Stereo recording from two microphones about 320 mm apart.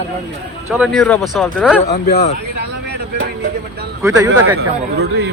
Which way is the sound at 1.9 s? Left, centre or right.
Left.